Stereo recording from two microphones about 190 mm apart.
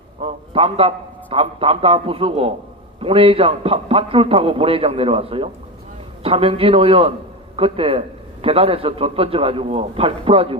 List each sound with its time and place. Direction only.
0.2 s a man's voice: 30° right (ahead or behind)